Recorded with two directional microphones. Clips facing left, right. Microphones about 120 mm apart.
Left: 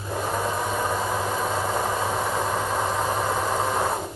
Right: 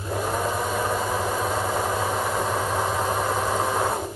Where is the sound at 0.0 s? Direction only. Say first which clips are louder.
Right 1 dB; centre (ahead or behind).